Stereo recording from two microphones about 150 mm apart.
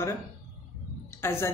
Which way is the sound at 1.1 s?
15° left (ahead or behind).